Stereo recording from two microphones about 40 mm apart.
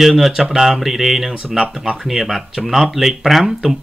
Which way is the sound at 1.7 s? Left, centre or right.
Centre.